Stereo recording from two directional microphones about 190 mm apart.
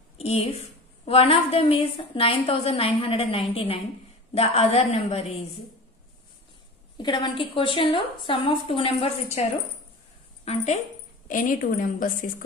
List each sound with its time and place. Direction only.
0.2 s a woman's voice: 35° left (ahead or behind)
7.0 s a woman's voice: 25° left (ahead or behind)
11.2 s a woman's voice: 45° left (ahead or behind)